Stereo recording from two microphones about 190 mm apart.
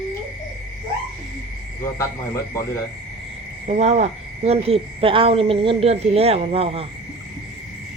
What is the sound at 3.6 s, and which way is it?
Speech, 35° right (ahead or behind).